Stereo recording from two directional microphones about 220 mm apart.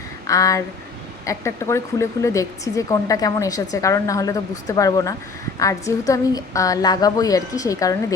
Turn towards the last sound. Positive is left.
turn(degrees=15)  # may be behind; listen again after turning